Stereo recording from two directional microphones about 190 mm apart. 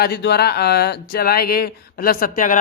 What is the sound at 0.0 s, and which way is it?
Speech, 60° left (ahead or behind).